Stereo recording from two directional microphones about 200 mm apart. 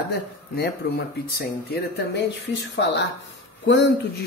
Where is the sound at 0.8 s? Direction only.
50° left (ahead or behind).